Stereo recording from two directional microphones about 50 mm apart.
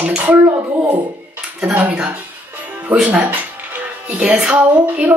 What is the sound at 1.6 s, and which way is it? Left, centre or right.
Speech, right.